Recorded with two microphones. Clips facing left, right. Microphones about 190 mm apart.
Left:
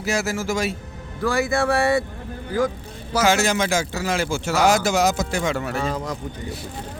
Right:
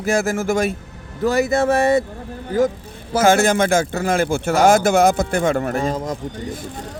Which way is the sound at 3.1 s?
50° right (ahead or behind).